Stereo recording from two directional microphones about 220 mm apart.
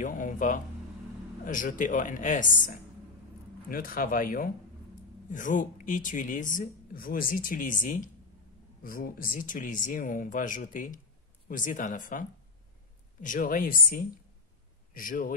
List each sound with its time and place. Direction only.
0.0 s speech: 35° left (ahead or behind)